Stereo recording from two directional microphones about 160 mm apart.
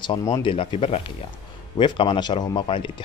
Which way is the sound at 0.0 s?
25° left (ahead or behind).